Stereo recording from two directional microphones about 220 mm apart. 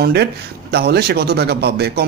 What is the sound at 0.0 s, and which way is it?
A man's voice, 50° right (ahead or behind).